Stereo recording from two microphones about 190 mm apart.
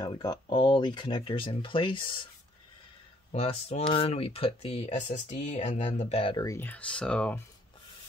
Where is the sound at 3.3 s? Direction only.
30° left (ahead or behind); by 7.4 s 5° left (ahead or behind).